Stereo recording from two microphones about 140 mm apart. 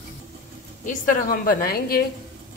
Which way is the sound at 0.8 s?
75° left (ahead or behind).